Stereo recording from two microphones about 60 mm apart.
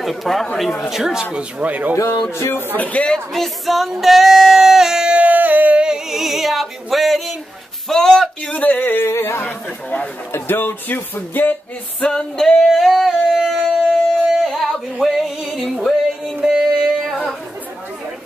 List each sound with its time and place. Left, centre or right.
0.0 s speech: centre
0.8 s speech: centre; by 2.0 s right
2.8 s speech: left
3.3 s music: centre
5.1 s a sound: right; by 7.3 s centre
7.9 s speech: centre
8.5 s speech: left
10.3 s speech: left
12.0 s singing: centre
13.8 s music: centre
15.8 s a sound: centre